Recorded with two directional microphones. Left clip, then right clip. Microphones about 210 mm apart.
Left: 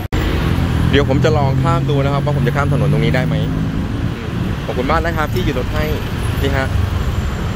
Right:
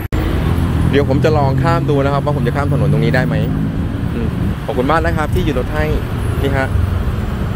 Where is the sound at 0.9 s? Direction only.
Centre (ahead or behind).